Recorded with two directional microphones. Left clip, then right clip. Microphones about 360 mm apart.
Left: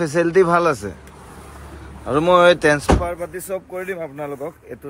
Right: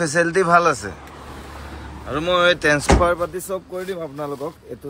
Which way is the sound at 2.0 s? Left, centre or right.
Centre.